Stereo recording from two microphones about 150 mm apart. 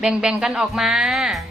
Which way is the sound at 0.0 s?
5° right (ahead or behind).